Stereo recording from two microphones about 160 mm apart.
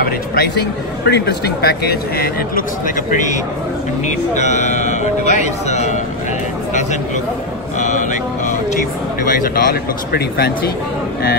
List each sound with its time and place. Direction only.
0.0 s speech: 70° left (ahead or behind)
1.0 s speech: 90° left; by 2.6 s 70° left (ahead or behind)
3.1 s speech: 50° left (ahead or behind)
7.8 s speech: 50° left (ahead or behind); by 10.5 s 80° left